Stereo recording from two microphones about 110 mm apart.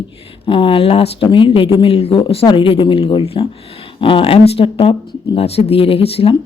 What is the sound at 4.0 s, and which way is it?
Speech, 55° left (ahead or behind).